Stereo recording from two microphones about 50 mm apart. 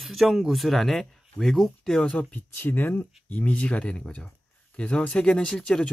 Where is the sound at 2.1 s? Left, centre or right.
Left.